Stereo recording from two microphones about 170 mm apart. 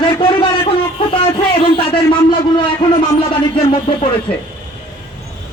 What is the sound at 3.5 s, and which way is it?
Speech, 30° left (ahead or behind).